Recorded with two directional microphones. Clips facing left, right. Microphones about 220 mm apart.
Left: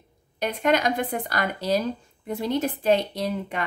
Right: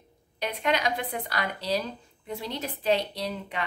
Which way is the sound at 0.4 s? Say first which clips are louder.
Left 5 dB; 45° left (ahead or behind).